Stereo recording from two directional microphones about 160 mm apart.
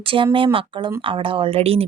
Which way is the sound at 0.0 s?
35° right (ahead or behind).